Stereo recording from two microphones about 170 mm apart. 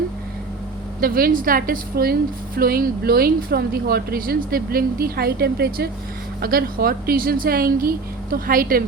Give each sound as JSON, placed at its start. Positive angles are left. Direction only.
{"t": 1.0, "sound": "speech", "side_deg": -60}